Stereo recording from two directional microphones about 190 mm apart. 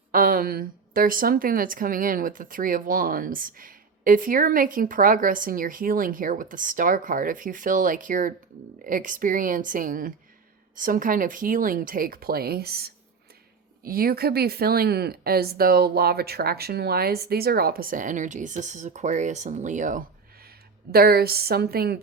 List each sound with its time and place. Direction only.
0.1 s a woman's voice: 50° right (ahead or behind)